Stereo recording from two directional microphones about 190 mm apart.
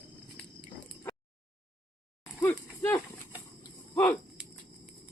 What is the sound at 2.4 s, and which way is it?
Livestock, 15° left (ahead or behind).